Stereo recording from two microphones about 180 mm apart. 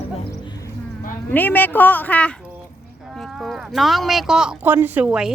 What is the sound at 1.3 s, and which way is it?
Speech, 10° left (ahead or behind).